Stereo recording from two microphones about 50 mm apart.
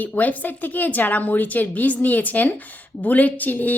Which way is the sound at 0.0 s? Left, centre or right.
Left.